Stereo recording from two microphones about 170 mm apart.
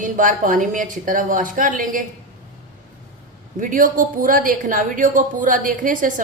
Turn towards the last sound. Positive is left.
turn(degrees=-50)  # may be behind; listen again after turning